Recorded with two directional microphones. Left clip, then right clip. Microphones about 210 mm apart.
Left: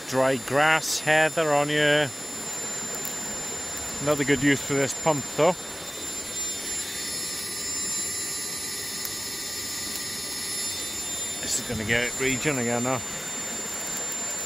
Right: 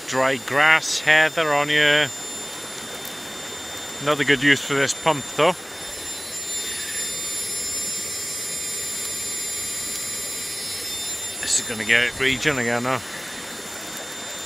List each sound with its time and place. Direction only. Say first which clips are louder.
0.1 s speech: right 2 dB; 20° left (ahead or behind)
4.0 s speech: right 4 dB; 5° left (ahead or behind)
11.4 s speech: right 7 dB; 15° left (ahead or behind)